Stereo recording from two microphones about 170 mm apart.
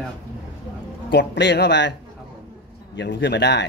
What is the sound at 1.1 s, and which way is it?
Speech, 90° left.